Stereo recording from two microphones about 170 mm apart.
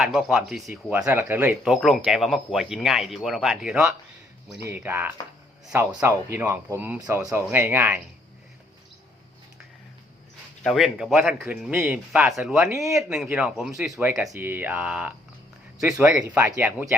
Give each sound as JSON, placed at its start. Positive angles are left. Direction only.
{"t": 0.0, "sound": "speech", "side_deg": -5}
{"t": 10.6, "sound": "speech", "side_deg": 0}
{"t": 13.9, "sound": "speech", "side_deg": -20}